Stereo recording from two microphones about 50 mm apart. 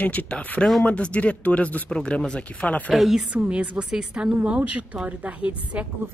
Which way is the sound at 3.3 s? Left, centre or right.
Right.